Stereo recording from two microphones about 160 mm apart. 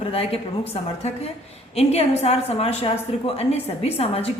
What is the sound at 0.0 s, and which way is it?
A woman's voice, 35° left (ahead or behind).